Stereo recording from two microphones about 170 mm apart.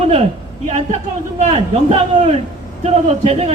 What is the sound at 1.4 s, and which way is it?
A man's voice, 35° right (ahead or behind).